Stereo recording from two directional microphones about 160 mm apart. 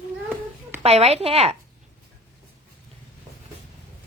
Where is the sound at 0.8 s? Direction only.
40° right (ahead or behind).